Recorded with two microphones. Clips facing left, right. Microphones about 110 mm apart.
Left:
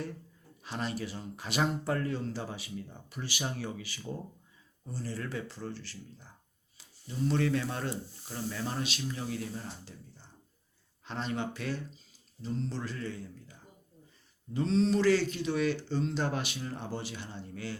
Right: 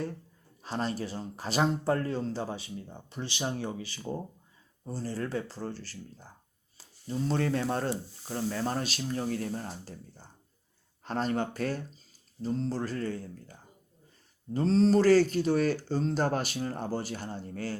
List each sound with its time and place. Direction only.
0.6 s speech: 35° right (ahead or behind)